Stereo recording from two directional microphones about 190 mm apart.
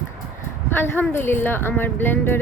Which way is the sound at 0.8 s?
10° left (ahead or behind).